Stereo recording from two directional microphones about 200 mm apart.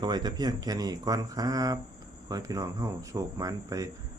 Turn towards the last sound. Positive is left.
turn(degrees=-15)  # may be behind; listen again after turning